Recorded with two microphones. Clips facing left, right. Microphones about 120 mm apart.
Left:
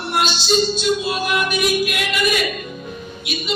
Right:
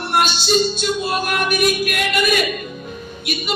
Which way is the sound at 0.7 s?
50° right (ahead or behind).